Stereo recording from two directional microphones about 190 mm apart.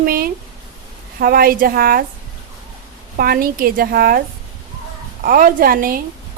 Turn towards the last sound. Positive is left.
turn(degrees=-50)  # may be behind; listen again after turning